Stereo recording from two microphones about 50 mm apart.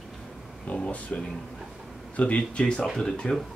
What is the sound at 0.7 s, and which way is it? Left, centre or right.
Speech, left.